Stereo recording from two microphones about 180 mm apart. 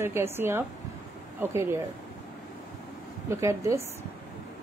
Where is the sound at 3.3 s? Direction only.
15° right (ahead or behind).